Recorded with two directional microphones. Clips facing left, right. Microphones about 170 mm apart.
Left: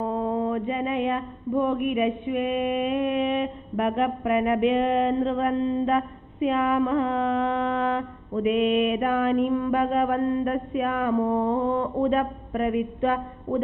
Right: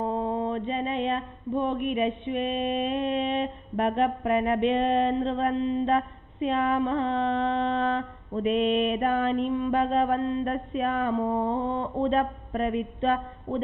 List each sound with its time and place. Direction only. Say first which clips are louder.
0.0 s mantra: left 2 dB; 25° right (ahead or behind)